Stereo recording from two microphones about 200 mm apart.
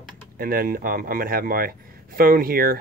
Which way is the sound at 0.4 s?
45° right (ahead or behind).